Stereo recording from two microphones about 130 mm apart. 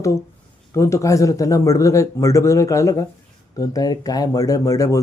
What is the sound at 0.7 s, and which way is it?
Speech, 20° left (ahead or behind).